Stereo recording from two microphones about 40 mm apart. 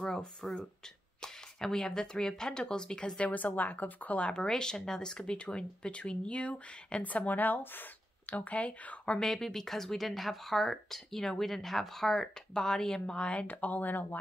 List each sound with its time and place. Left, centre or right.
0.2 s speech: centre
3.3 s a woman's voice: left
4.3 s speech: centre; by 7.9 s left
8.3 s speech: left
9.2 s speech: centre; by 13.5 s left
13.5 s a woman's voice: left